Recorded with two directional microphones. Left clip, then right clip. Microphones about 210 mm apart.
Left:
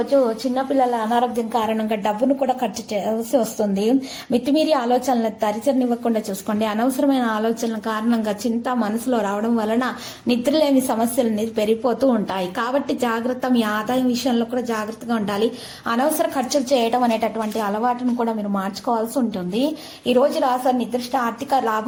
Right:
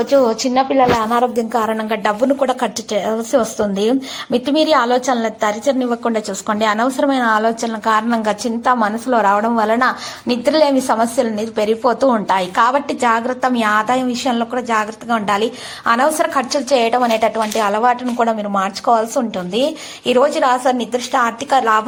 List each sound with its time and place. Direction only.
0.1 s a woman's voice: 20° right (ahead or behind)
1.7 s speech: 5° left (ahead or behind)
2.4 s a woman's voice: 20° right (ahead or behind)